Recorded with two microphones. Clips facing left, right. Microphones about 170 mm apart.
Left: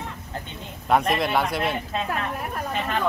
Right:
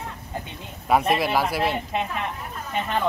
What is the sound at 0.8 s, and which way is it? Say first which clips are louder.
Speech: right 1 dB; 5° right (ahead or behind).